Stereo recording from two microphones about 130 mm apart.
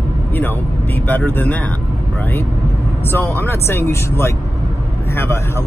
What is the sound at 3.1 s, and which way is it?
Speech, 15° left (ahead or behind).